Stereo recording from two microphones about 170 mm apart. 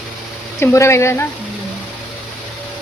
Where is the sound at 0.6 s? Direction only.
15° left (ahead or behind).